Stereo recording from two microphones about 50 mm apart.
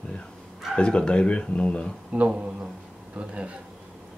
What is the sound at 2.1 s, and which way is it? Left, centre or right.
Speech, right.